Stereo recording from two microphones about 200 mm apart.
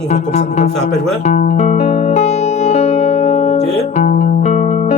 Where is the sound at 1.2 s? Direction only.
35° left (ahead or behind).